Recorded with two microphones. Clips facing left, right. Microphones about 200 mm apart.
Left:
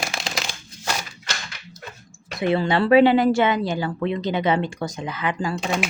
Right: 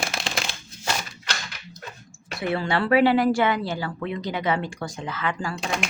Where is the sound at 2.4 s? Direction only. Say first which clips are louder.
Left 4 dB; 20° left (ahead or behind).